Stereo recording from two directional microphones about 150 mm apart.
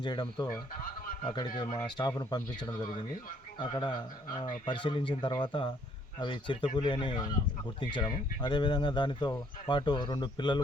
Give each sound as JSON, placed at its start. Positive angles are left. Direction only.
{"t": 0.0, "sound": "speech", "side_deg": 30}
{"t": 1.5, "sound": "speech", "side_deg": 25}